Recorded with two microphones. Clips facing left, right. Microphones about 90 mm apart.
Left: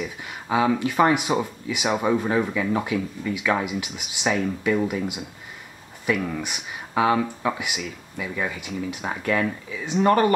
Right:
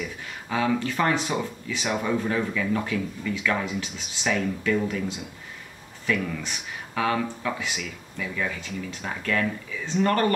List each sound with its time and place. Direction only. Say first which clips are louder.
0.2 s speech: left 5 dB; 15° left (ahead or behind)